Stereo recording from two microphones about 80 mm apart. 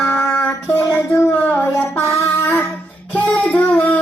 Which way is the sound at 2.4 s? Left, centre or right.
Left.